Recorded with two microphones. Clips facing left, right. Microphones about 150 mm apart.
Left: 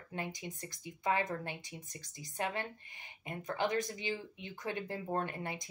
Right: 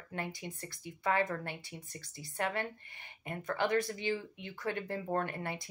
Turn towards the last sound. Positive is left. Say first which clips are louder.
# right 2 dB
turn(degrees=20)  # may be behind; listen again after turning